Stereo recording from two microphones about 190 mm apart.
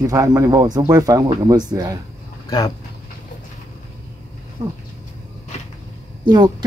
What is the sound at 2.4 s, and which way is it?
Speech, 20° left (ahead or behind).